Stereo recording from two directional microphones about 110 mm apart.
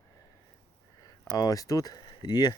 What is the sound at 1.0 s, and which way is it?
Speech, 35° left (ahead or behind).